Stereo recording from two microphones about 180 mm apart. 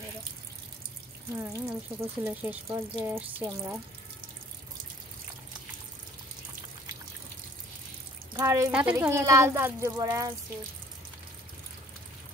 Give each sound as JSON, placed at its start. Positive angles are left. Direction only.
{"t": 1.4, "sound": "speech", "side_deg": -15}
{"t": 8.4, "sound": "speech", "side_deg": -15}